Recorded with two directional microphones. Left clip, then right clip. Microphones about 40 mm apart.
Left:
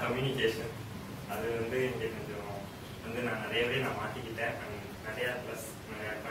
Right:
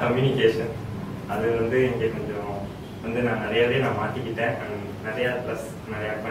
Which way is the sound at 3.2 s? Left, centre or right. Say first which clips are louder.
Right 10 dB; left.